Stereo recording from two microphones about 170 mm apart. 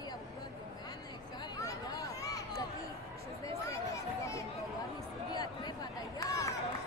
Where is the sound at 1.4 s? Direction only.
20° left (ahead or behind).